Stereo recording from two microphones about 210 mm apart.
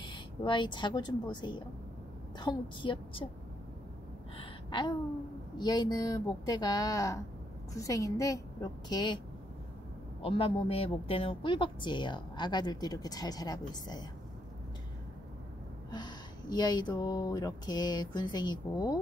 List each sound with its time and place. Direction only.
0.0 s a woman's voice: 25° left (ahead or behind)
4.4 s gasp: 25° left (ahead or behind)
5.6 s a woman's voice: 20° left (ahead or behind)
10.2 s a woman's voice: 25° left (ahead or behind)
15.9 s a woman's voice: 20° left (ahead or behind)